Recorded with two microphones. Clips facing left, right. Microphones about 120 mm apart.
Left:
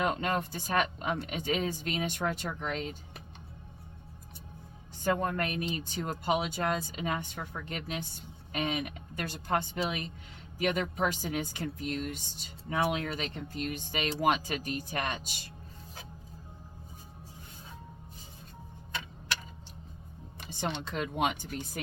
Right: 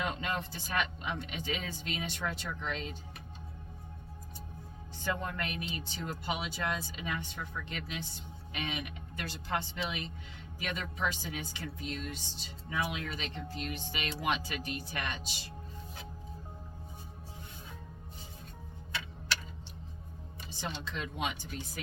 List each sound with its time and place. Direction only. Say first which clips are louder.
0.0 s speech: left 5 dB; 50° left (ahead or behind)
5.0 s speech: left 6 dB; 45° left (ahead or behind)
20.4 s speech: left 5 dB; 60° left (ahead or behind)